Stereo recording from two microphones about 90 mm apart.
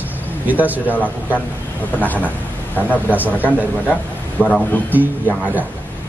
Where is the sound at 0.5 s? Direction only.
20° right (ahead or behind).